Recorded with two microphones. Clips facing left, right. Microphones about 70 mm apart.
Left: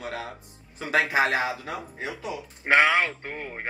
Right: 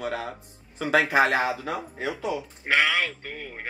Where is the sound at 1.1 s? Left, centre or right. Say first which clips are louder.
Right 2 dB; right.